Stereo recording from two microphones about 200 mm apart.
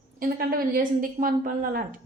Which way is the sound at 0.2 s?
45° right (ahead or behind).